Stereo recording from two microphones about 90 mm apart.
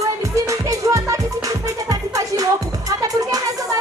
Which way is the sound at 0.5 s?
40° right (ahead or behind).